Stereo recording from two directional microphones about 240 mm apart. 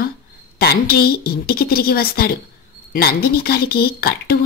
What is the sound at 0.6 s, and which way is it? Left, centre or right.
A woman's voice, left.